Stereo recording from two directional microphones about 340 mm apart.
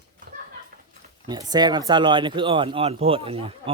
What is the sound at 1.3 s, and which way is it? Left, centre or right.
Speech, centre.